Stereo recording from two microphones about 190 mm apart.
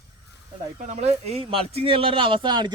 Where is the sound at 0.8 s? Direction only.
40° right (ahead or behind).